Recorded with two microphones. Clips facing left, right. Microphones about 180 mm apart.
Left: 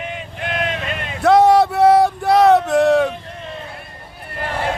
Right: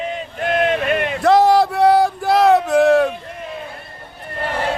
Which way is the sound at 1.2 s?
Centre (ahead or behind).